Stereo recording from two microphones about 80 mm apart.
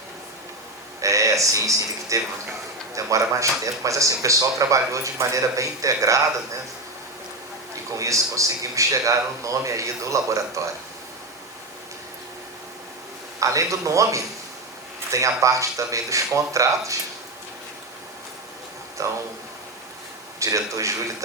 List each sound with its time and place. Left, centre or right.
1.0 s a man's voice: right
7.9 s a man's voice: right
13.4 s a man's voice: right
19.0 s a man's voice: right
20.4 s a man's voice: right